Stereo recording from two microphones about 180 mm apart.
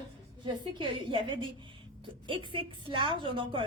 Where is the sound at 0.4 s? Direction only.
25° right (ahead or behind).